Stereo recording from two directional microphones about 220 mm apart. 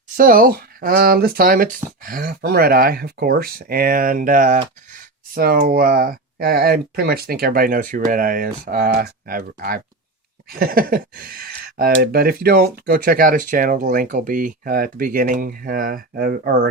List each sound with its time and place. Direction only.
0.2 s speech: 40° right (ahead or behind)